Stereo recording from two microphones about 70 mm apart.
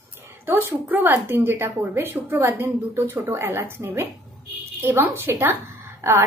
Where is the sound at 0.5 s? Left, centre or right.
Right.